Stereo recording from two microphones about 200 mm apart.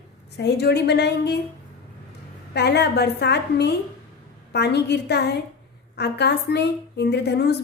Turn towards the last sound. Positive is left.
turn(degrees=55)  # may be behind; listen again after turning